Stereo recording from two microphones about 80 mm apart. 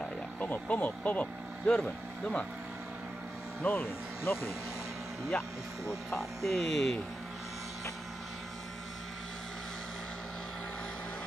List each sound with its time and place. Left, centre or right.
0.0 s speech: centre
3.6 s speech: left
5.9 s speech: centre